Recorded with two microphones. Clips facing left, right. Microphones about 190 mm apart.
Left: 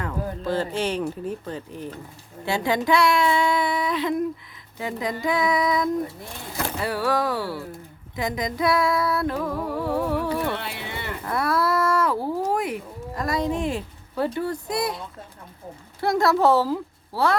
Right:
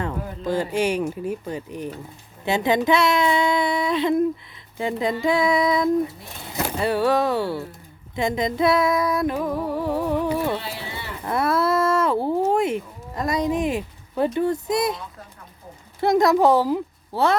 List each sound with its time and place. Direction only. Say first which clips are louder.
0.4 s female singing: right 4 dB; 15° right (ahead or behind)
2.4 s speech: right 3 dB; 20° right (ahead or behind)
8.1 s female singing: right 4 dB; 25° right (ahead or behind)
11.3 s a sound: right 3 dB; 25° right (ahead or behind)
14.3 s speech: right 5 dB; 20° right (ahead or behind)
16.0 s a woman's voice: right 3 dB; 20° right (ahead or behind)